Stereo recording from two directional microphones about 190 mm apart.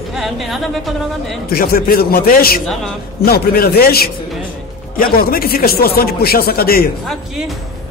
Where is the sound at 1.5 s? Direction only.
50° left (ahead or behind).